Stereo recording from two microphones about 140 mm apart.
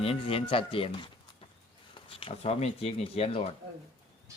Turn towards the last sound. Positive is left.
turn(degrees=45)  # may be behind; listen again after turning